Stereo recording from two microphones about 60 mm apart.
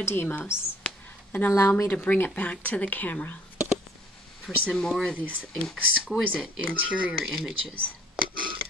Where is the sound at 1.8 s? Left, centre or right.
Left.